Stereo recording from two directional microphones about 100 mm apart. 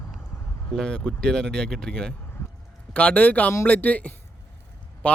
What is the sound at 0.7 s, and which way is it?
Speech, 10° left (ahead or behind).